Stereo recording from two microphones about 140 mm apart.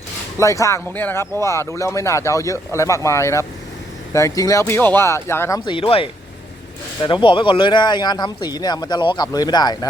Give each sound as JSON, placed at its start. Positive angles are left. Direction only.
{"t": 0.3, "sound": "speech", "side_deg": 20}
{"t": 5.6, "sound": "speech", "side_deg": 40}